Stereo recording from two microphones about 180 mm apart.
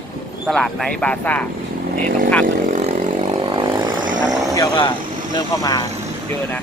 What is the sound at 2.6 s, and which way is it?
Vehicle, 35° right (ahead or behind).